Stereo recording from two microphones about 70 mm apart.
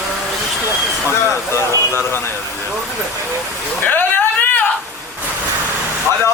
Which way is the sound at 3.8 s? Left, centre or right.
Left.